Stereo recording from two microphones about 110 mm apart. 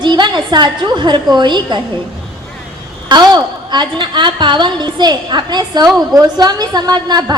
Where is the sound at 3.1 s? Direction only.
40° right (ahead or behind).